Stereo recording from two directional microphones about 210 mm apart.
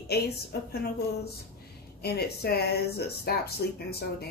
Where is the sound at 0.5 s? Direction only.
50° left (ahead or behind).